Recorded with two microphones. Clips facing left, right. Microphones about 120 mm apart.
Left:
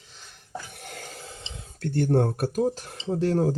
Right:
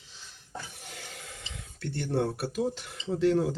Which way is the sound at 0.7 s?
55° left (ahead or behind).